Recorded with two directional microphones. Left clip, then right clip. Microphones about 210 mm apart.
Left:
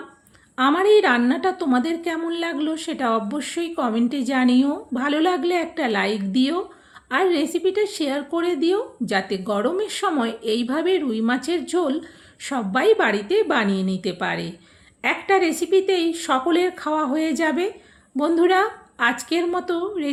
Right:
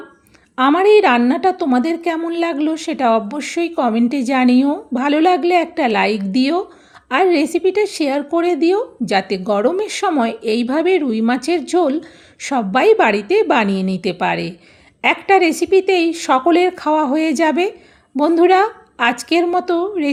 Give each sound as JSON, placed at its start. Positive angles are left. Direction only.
{"t": 0.5, "sound": "a woman's voice", "side_deg": -35}